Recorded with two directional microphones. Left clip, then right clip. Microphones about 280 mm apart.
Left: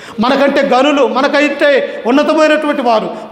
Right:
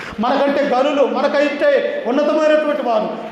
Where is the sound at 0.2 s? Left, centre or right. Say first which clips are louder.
Left 5 dB; left.